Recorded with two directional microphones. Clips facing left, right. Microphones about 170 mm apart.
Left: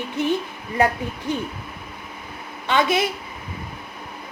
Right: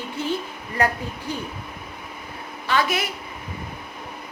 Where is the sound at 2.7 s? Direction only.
25° left (ahead or behind).